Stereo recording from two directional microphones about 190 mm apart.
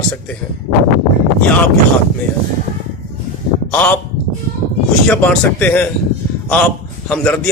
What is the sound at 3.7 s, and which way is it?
Speech, 10° left (ahead or behind).